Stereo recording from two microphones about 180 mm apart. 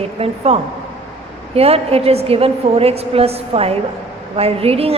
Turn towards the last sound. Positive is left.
turn(degrees=-35)  # may be behind; listen again after turning